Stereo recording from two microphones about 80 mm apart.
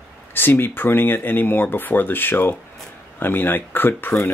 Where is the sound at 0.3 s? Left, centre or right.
Left.